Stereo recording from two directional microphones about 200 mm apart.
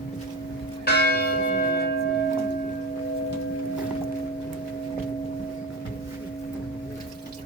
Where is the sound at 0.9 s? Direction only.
55° left (ahead or behind).